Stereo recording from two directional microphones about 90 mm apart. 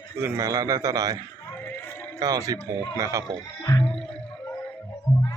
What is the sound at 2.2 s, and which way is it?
A man's voice, 40° right (ahead or behind).